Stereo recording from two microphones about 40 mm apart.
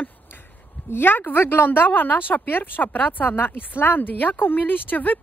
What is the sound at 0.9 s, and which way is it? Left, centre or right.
Speech, left.